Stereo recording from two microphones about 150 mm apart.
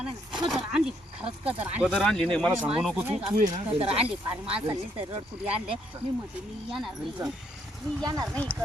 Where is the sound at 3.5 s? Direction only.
35° right (ahead or behind).